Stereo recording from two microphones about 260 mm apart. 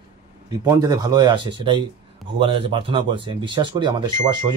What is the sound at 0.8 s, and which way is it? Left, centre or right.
Speech, centre.